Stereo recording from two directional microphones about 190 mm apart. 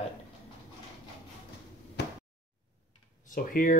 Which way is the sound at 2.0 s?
60° left (ahead or behind).